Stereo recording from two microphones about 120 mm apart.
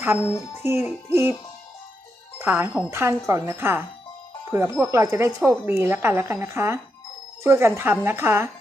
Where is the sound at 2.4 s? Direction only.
15° right (ahead or behind).